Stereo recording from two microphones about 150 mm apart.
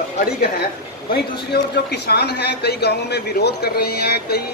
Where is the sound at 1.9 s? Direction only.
90° left.